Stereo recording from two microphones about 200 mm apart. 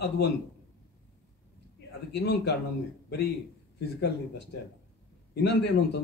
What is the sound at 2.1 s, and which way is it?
Speech, 55° left (ahead or behind).